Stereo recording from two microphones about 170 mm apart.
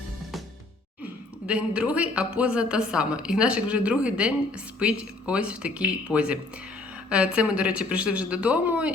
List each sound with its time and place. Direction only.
1.5 s a woman's voice: 5° right (ahead or behind)